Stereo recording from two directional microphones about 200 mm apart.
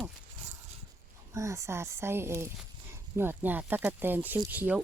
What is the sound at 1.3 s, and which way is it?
Speech, 15° right (ahead or behind).